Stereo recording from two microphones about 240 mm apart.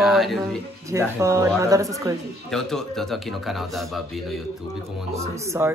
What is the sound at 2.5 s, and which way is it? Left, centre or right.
Speech, centre.